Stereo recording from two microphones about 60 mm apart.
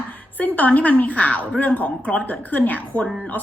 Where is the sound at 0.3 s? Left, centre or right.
Left.